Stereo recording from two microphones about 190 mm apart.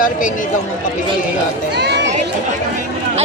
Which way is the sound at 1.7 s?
65° right (ahead or behind).